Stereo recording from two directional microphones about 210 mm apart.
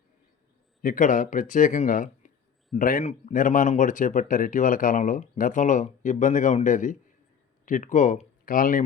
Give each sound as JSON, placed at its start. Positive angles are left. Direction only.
{"t": 0.8, "sound": "speech", "side_deg": 40}